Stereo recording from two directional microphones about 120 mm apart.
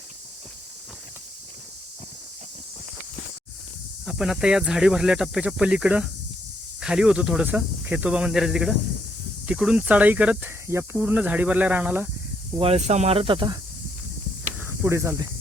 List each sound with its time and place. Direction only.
4.0 s speech: 5° right (ahead or behind)
12.5 s speech: 60° right (ahead or behind); by 13.6 s 40° right (ahead or behind)
14.6 s speech: 25° right (ahead or behind)